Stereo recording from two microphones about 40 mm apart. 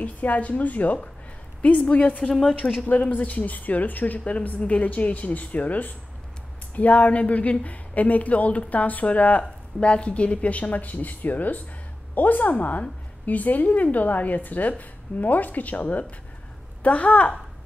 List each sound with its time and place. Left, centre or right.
0.0 s a woman's voice: left
4.2 s speech: left
9.4 s a woman's voice: left